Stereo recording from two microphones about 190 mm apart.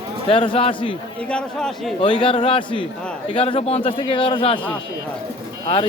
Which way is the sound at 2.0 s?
25° left (ahead or behind).